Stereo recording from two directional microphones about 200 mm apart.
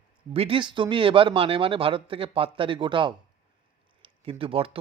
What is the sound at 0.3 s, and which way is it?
Speech, 25° right (ahead or behind).